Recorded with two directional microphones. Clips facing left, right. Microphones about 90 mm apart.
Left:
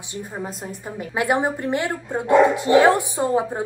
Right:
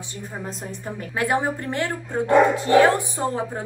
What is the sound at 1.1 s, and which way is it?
A woman's voice, 15° left (ahead or behind).